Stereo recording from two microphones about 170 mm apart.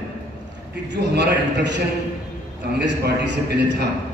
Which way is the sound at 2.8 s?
90° right.